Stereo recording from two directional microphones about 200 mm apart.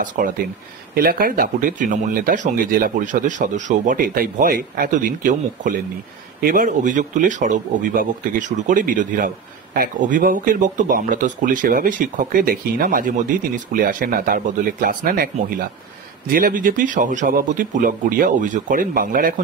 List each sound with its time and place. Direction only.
0.0 s speech: 40° right (ahead or behind)